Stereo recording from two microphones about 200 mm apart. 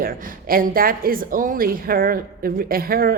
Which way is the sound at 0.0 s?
45° right (ahead or behind).